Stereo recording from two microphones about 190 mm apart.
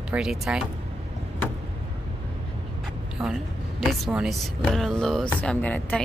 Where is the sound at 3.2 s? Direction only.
10° right (ahead or behind); by 6.0 s 10° left (ahead or behind).